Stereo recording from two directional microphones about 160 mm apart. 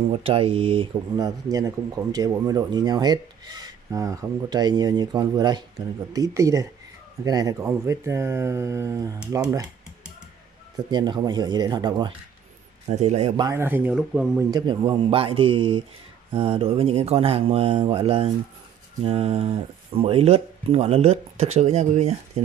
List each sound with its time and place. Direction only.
0.1 s speech: 35° right (ahead or behind); by 9.5 s 20° right (ahead or behind)
10.9 s speech: 25° right (ahead or behind)
12.8 s a man's voice: 45° right (ahead or behind)
13.4 s speech: 15° right (ahead or behind)
14.5 s speech: 30° right (ahead or behind)